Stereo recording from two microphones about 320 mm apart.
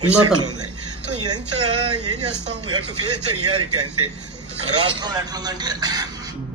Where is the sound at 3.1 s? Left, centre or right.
Right.